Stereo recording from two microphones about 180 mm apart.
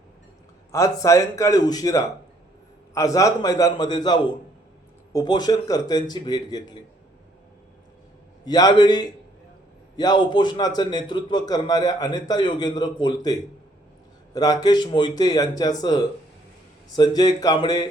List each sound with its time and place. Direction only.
0.7 s a man's voice: 20° left (ahead or behind)
8.4 s a man's voice: 20° left (ahead or behind)